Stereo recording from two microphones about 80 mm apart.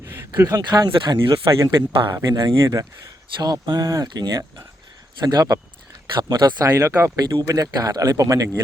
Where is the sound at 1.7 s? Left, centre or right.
Right.